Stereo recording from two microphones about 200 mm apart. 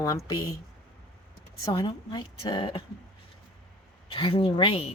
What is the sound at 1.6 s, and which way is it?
Speech, 20° left (ahead or behind).